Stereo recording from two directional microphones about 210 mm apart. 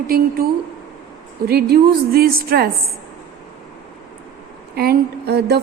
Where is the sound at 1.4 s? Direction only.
50° right (ahead or behind).